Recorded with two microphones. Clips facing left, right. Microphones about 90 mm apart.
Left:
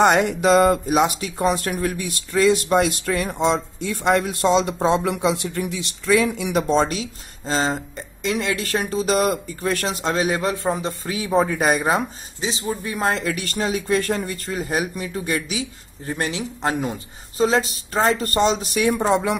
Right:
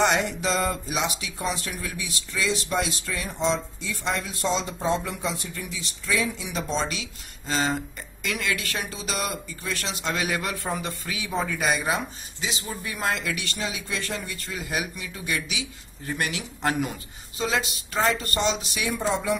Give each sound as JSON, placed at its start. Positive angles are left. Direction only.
{"t": 0.0, "sound": "speech", "side_deg": 55}
{"t": 12.4, "sound": "speech", "side_deg": 35}
{"t": 16.1, "sound": "speech", "side_deg": 30}
{"t": 17.4, "sound": "speech", "side_deg": 35}